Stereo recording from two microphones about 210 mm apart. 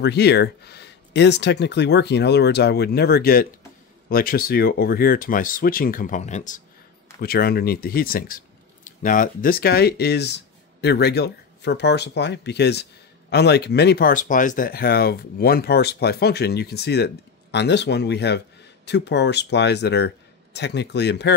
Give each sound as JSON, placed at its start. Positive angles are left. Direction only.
{"t": 0.0, "sound": "speech", "side_deg": 50}